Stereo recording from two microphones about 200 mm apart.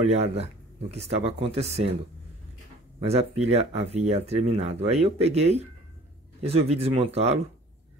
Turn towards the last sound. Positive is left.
turn(degrees=-30)  # may be behind; listen again after turning